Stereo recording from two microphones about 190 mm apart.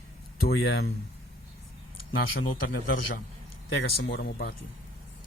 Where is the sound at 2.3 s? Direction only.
50° left (ahead or behind).